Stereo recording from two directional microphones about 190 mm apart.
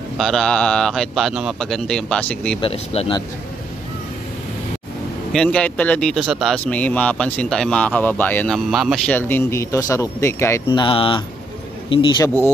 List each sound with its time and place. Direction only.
0.2 s speech: centre (ahead or behind)
2.6 s speech: 30° left (ahead or behind)
5.3 s speech: 5° left (ahead or behind); by 12.3 s 25° left (ahead or behind)